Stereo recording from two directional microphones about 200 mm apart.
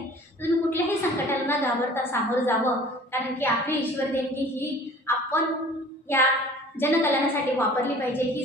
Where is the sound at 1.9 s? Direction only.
10° left (ahead or behind).